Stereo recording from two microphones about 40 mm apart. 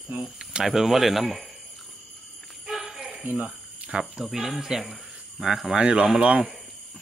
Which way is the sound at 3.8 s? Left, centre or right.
Right.